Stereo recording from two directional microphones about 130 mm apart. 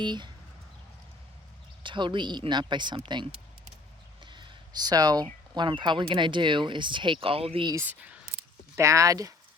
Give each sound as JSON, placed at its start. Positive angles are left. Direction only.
{"t": 0.0, "sound": "speech", "side_deg": -35}
{"t": 1.8, "sound": "speech", "side_deg": -40}
{"t": 4.2, "sound": "a sound", "side_deg": -40}
{"t": 5.5, "sound": "speech", "side_deg": -35}
{"t": 7.9, "sound": "a sound", "side_deg": -10}
{"t": 8.8, "sound": "speech", "side_deg": -25}